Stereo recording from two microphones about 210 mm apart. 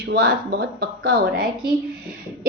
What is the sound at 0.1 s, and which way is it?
A woman's voice, 45° right (ahead or behind).